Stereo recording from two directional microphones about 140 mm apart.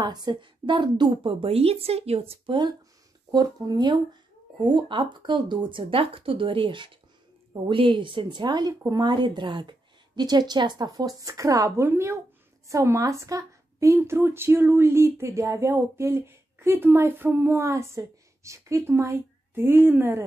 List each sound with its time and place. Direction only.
0.0 s a woman's voice: 30° right (ahead or behind)
3.3 s a woman's voice: 25° right (ahead or behind)